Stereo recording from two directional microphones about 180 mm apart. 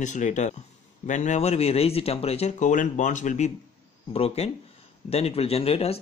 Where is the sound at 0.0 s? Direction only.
45° left (ahead or behind).